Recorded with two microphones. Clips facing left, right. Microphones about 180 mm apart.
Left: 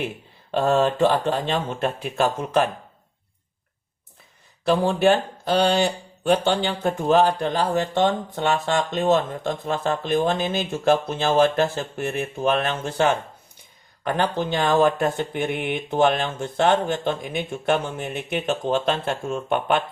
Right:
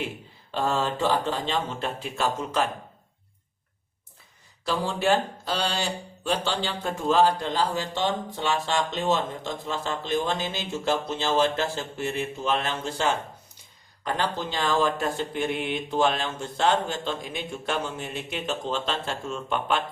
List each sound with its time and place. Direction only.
0.5 s speech: 55° left (ahead or behind)
4.6 s speech: 60° left (ahead or behind)